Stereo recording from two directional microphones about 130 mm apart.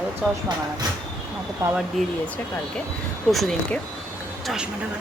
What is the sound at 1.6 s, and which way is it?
Speech, 20° right (ahead or behind).